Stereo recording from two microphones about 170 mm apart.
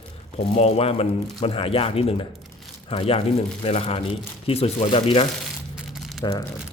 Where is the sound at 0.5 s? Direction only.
35° left (ahead or behind).